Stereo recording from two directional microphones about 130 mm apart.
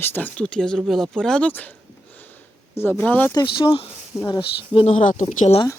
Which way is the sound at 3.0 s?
10° left (ahead or behind).